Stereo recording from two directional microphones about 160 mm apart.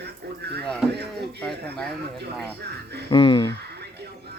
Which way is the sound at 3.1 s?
30° left (ahead or behind).